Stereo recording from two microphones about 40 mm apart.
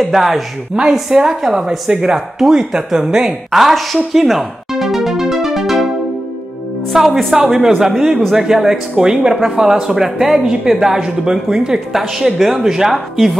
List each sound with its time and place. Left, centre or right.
0.1 s a woman's voice: centre
0.8 s speech: right
3.5 s music: centre
6.9 s a woman's voice: centre
8.9 s speech: right
11.9 s a woman's voice: centre
12.5 s speech: centre
12.9 s a woman's voice: centre